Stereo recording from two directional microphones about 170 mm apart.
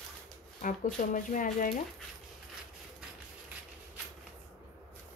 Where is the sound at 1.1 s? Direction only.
50° left (ahead or behind).